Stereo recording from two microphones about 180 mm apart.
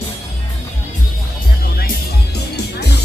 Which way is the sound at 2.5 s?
65° left (ahead or behind).